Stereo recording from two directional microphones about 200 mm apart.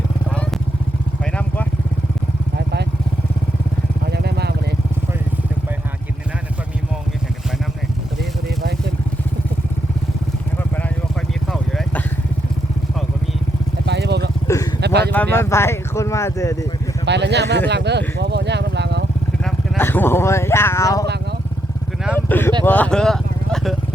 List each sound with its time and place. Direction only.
4.1 s vehicle: 55° right (ahead or behind)
13.8 s vehicle: 55° right (ahead or behind)
14.4 s vehicle: 15° left (ahead or behind)
14.8 s vehicle: 55° right (ahead or behind)
15.1 s speech: 10° left (ahead or behind)
17.1 s speech: 60° right (ahead or behind)
19.5 s speech: 10° left (ahead or behind)
22.3 s a sound: 10° left (ahead or behind)
22.6 s speech: 10° left (ahead or behind)